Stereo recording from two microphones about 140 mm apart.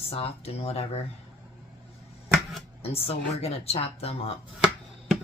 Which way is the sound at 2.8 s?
45° left (ahead or behind).